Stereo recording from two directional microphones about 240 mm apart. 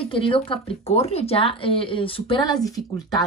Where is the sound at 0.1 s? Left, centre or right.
Left.